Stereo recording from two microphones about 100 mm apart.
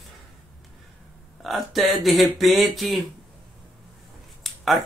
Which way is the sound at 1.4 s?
Centre (ahead or behind).